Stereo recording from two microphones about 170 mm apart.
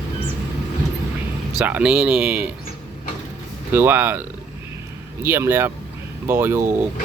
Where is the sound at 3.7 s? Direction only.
10° right (ahead or behind).